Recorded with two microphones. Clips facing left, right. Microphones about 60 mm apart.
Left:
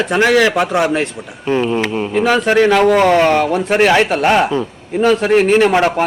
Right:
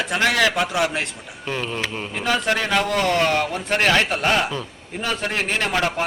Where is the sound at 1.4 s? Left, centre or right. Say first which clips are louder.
Left 10 dB; centre.